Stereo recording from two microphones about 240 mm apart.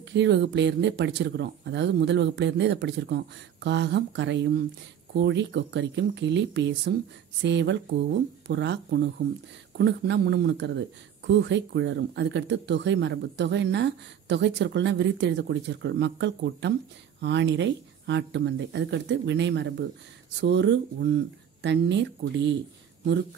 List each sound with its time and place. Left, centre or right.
0.1 s speech: right